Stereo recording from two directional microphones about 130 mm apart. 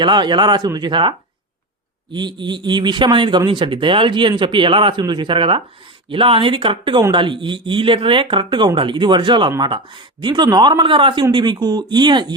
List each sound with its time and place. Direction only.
0.0 s speech: 35° right (ahead or behind)
2.1 s speech: 35° right (ahead or behind)